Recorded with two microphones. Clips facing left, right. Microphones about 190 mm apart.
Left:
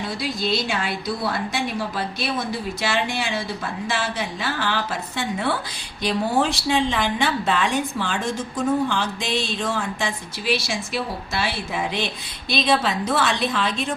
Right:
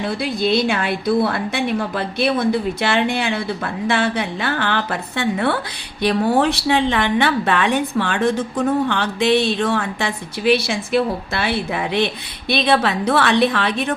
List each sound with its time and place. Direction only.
0.0 s a woman's voice: 55° right (ahead or behind)